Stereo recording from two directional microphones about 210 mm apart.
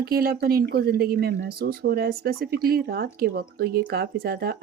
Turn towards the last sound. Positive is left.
turn(degrees=-45)  # may be behind; listen again after turning